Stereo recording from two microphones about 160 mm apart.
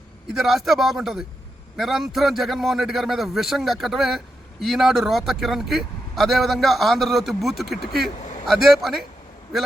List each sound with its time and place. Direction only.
0.3 s speech: centre (ahead or behind)
8.2 s a sound: 50° left (ahead or behind)
8.4 s speech: centre (ahead or behind)